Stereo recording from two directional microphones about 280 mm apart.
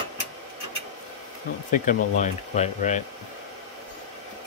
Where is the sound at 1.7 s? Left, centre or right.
Left.